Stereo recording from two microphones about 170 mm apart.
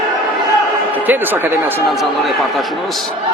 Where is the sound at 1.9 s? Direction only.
Centre (ahead or behind).